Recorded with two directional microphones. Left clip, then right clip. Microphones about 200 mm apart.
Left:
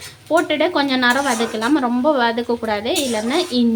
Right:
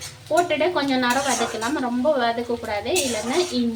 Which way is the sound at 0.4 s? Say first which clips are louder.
Left 4 dB; 65° left (ahead or behind).